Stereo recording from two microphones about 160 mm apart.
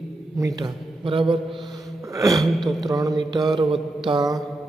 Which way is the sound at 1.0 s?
35° right (ahead or behind).